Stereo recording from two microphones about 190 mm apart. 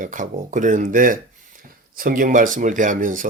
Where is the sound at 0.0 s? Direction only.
45° right (ahead or behind).